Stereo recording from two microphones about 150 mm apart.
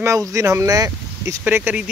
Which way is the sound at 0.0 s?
20° right (ahead or behind).